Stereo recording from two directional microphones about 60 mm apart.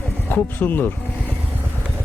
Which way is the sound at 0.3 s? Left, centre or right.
Left.